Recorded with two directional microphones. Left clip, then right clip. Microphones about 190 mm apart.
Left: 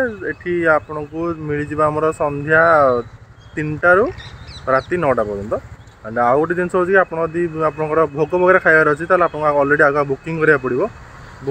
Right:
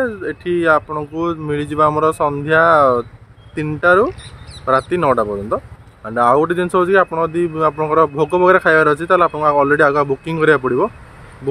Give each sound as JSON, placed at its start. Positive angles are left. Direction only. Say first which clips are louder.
{"t": 0.0, "sound": "speech", "louder": "right 1 dB", "side_deg": -15}